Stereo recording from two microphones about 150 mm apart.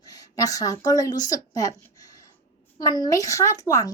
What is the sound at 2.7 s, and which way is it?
A woman's voice, 25° left (ahead or behind).